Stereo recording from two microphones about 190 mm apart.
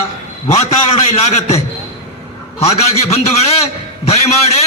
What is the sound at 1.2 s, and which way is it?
A man's voice, 35° left (ahead or behind).